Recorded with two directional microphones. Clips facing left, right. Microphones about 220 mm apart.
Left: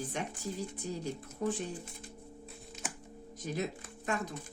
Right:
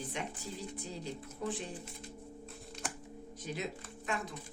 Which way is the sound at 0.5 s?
45° left (ahead or behind).